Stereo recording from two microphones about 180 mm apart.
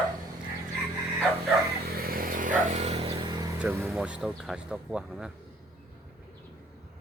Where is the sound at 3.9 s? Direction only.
5° right (ahead or behind).